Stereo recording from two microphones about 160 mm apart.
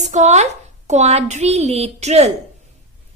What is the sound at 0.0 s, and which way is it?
A woman's voice, 45° right (ahead or behind).